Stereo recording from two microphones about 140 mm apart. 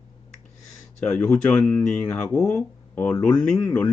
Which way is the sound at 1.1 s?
10° left (ahead or behind).